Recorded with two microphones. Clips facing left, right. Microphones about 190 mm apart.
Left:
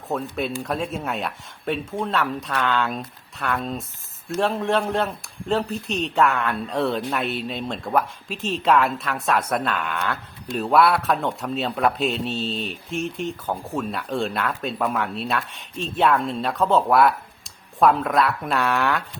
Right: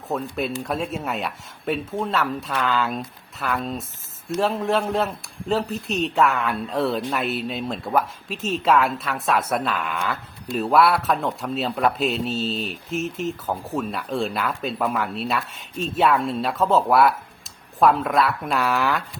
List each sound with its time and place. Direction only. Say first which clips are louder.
0.1 s a man's voice: even; centre (ahead or behind)